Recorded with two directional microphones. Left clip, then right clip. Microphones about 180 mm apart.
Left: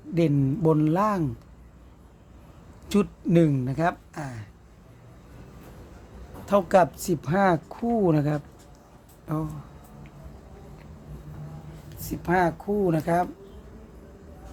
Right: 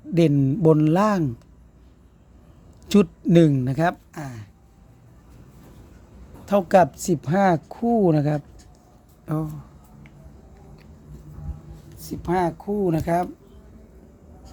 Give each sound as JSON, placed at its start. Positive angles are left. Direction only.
{"t": 0.1, "sound": "a woman's voice", "side_deg": -35}
{"t": 2.9, "sound": "a woman's voice", "side_deg": -35}
{"t": 6.4, "sound": "a woman's voice", "side_deg": -30}
{"t": 11.9, "sound": "a woman's voice", "side_deg": -20}